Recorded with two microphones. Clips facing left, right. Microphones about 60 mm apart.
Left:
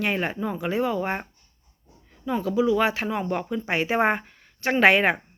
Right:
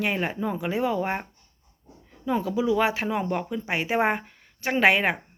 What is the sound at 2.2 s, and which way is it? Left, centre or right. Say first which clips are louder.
Speech: left 2 dB; centre.